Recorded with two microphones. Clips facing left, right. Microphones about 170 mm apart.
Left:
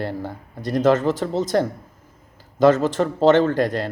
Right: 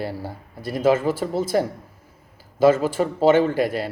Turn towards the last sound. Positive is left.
turn(degrees=-10)  # may be behind; listen again after turning